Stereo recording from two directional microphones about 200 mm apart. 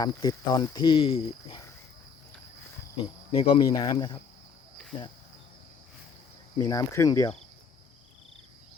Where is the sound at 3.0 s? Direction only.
25° left (ahead or behind).